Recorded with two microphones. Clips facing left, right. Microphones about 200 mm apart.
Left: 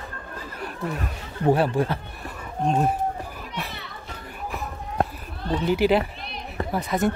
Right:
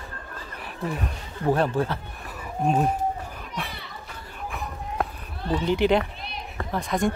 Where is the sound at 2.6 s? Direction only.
5° right (ahead or behind).